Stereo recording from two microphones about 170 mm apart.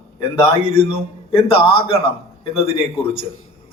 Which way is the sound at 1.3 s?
30° left (ahead or behind).